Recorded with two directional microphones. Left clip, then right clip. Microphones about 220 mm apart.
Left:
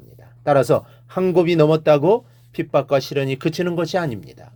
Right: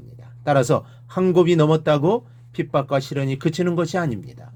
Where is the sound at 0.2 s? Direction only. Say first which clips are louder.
Left 3 dB; 30° left (ahead or behind).